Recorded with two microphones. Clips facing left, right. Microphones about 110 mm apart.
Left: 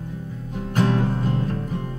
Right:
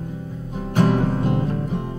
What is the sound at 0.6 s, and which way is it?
Music, 10° right (ahead or behind).